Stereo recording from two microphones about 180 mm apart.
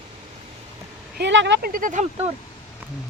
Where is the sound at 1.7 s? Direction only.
50° right (ahead or behind).